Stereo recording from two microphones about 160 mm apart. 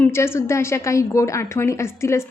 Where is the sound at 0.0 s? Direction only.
15° left (ahead or behind).